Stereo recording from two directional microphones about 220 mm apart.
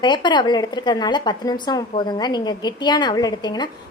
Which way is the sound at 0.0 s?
20° left (ahead or behind).